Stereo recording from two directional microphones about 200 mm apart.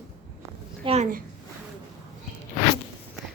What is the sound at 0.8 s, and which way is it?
Speech, 30° right (ahead or behind).